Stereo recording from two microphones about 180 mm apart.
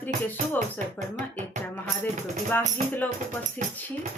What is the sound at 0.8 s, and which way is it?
Speech, 45° right (ahead or behind).